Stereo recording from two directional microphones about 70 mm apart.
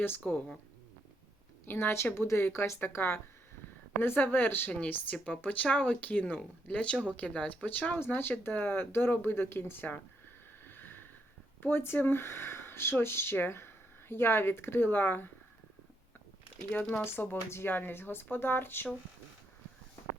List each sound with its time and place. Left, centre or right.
0.3 s speech: centre
1.6 s speech: left
10.6 s a sound: left
11.6 s speech: left
17.0 s speech: left